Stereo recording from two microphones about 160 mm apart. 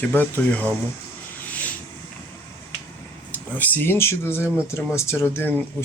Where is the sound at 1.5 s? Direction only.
10° left (ahead or behind).